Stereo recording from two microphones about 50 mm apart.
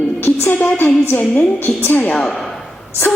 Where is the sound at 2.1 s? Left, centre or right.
Centre.